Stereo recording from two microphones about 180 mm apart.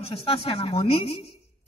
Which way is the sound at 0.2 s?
30° left (ahead or behind).